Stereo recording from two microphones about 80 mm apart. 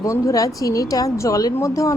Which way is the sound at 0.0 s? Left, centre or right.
Left.